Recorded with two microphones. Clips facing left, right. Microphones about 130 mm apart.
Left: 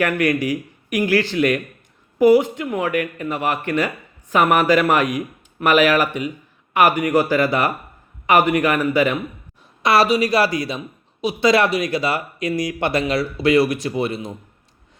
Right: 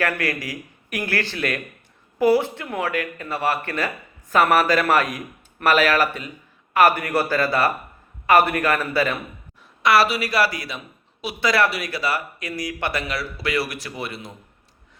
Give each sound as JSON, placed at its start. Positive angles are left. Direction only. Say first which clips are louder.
{"t": 0.0, "sound": "speech", "louder": "left 6 dB", "side_deg": 20}